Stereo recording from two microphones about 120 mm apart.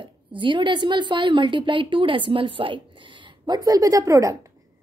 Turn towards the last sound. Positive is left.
turn(degrees=-30)  # may be behind; listen again after turning